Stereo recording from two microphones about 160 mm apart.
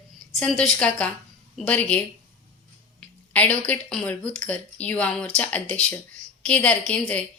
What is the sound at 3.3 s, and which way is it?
A woman's voice, 10° left (ahead or behind).